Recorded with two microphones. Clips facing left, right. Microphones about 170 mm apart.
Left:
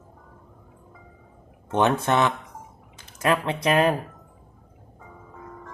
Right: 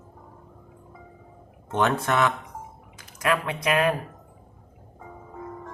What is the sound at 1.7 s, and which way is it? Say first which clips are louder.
Speech: left 2 dB; 20° left (ahead or behind).